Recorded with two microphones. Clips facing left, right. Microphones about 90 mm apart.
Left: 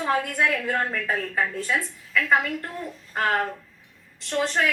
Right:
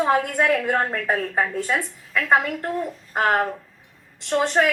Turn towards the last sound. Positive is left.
turn(degrees=-25)  # may be behind; listen again after turning